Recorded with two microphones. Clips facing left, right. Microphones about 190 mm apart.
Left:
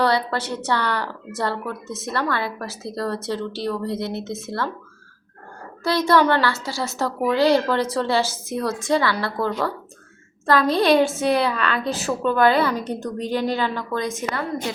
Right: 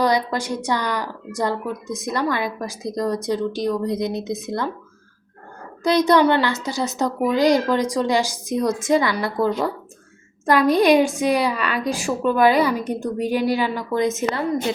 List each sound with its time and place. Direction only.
0.0 s a woman's voice: 15° right (ahead or behind)
5.8 s a woman's voice: 15° right (ahead or behind)